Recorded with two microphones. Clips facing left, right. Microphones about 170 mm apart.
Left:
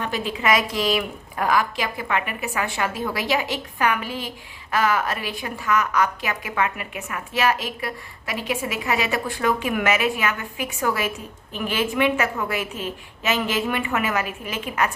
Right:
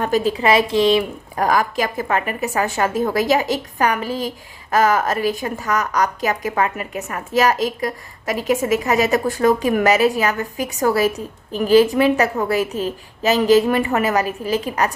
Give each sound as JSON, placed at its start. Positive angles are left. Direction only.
{"t": 0.0, "sound": "a woman's voice", "side_deg": -40}
{"t": 1.4, "sound": "a woman's voice", "side_deg": -40}